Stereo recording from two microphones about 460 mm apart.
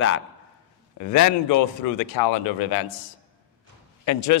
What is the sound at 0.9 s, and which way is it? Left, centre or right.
A man's voice, left.